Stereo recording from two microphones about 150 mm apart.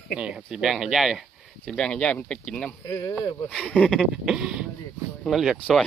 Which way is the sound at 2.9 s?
20° left (ahead or behind).